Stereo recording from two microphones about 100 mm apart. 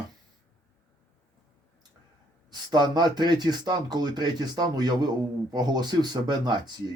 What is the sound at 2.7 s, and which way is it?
Speech, 45° right (ahead or behind).